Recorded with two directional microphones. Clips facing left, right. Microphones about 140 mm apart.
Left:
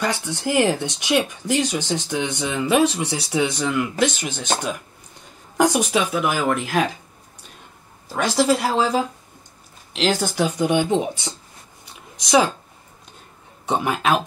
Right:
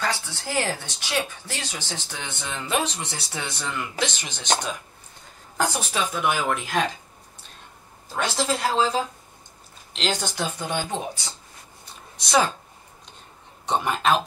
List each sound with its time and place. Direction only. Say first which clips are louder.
0.0 s speech: left 5 dB; 20° left (ahead or behind)
5.6 s speech: left 7 dB; 15° left (ahead or behind)
8.1 s speech: left 7 dB; 10° left (ahead or behind)
13.7 s speech: left 2 dB; 5° left (ahead or behind)